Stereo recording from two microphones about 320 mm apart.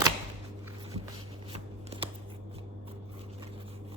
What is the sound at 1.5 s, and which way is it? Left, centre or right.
Shuffling cards, centre.